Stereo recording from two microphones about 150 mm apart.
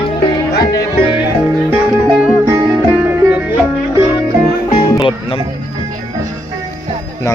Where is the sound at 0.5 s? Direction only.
90° left.